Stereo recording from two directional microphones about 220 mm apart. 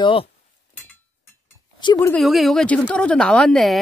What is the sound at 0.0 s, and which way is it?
Speech, 25° left (ahead or behind).